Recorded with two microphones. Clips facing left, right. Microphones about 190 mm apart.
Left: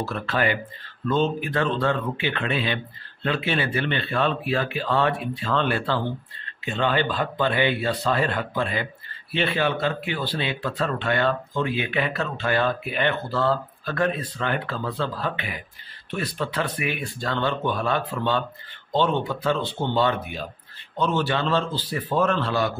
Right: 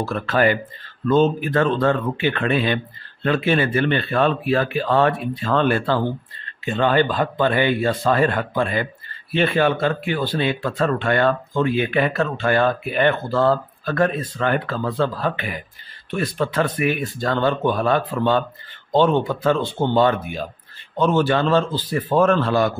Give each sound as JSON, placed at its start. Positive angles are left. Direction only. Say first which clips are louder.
{"t": 0.0, "sound": "speech", "louder": "right 6 dB", "side_deg": -45}